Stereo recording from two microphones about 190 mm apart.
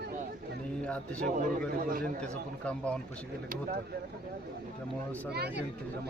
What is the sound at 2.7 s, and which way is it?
Speech, 5° left (ahead or behind).